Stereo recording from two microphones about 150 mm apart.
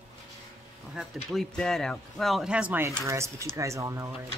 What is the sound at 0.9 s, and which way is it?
Speech, centre (ahead or behind).